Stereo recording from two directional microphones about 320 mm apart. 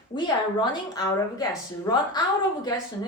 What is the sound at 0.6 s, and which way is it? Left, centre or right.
A woman's voice, centre.